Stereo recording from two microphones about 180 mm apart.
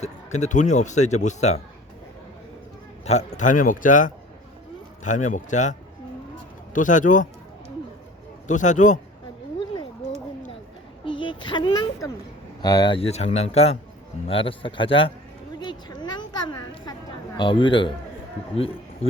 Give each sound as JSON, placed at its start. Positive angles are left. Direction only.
{"t": 0.0, "sound": "a man's voice", "side_deg": 40}
{"t": 3.0, "sound": "a man's voice", "side_deg": 35}
{"t": 6.7, "sound": "speech", "side_deg": 45}
{"t": 8.4, "sound": "speech", "side_deg": 45}
{"t": 11.0, "sound": "a sound", "side_deg": 25}
{"t": 12.6, "sound": "a man's voice", "side_deg": 25}
{"t": 15.6, "sound": "a sound", "side_deg": 25}
{"t": 17.3, "sound": "speech", "side_deg": 25}